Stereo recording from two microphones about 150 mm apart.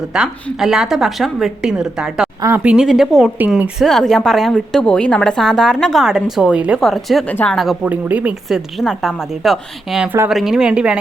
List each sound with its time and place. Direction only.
0.1 s a woman's voice: 5° right (ahead or behind)
2.4 s speech: 15° right (ahead or behind)
2.7 s a woman's voice: centre (ahead or behind)